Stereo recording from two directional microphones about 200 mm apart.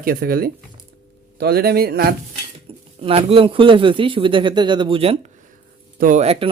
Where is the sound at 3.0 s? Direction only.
30° right (ahead or behind).